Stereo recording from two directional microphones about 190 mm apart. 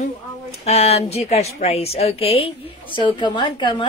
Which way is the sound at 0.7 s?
35° left (ahead or behind).